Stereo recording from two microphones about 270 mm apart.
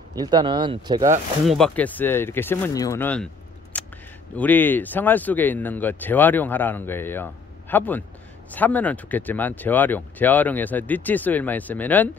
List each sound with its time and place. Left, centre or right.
0.1 s speech: centre
1.4 s speech: centre
3.7 s a sound: centre
4.4 s speech: centre